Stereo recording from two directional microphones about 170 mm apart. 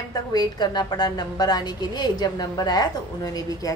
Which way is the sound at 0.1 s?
25° left (ahead or behind).